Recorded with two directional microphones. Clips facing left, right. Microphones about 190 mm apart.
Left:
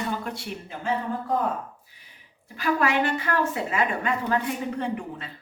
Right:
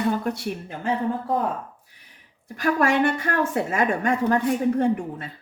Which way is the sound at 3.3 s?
50° right (ahead or behind).